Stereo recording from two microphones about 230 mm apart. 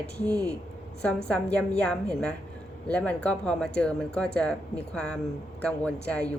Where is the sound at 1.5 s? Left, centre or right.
Centre.